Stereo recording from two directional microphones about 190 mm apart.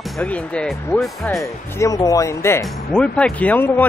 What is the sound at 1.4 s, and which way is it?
Speech, 15° left (ahead or behind).